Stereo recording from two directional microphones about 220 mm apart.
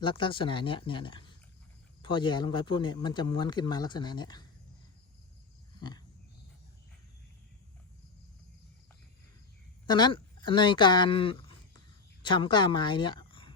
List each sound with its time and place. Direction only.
0.0 s speech: 20° left (ahead or behind)
9.8 s a woman's voice: 20° left (ahead or behind)